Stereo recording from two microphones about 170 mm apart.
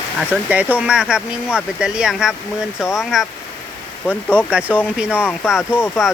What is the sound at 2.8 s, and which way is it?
Speech, 15° left (ahead or behind).